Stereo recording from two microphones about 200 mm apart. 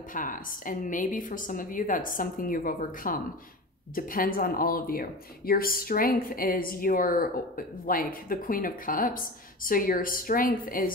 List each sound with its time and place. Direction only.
0.1 s speech: 40° left (ahead or behind)